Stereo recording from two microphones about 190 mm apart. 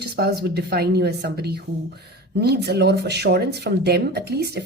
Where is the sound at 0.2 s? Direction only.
55° right (ahead or behind).